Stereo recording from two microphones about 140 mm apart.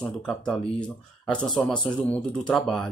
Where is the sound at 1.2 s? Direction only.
5° left (ahead or behind).